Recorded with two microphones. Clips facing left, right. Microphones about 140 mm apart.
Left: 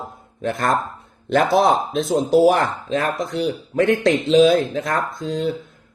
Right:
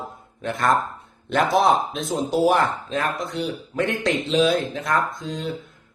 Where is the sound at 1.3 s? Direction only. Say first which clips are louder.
Left 3 dB; 40° left (ahead or behind).